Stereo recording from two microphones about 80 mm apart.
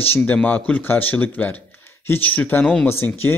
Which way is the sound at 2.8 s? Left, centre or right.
Left.